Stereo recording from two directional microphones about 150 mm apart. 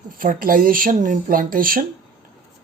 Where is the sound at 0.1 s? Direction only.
70° right (ahead or behind).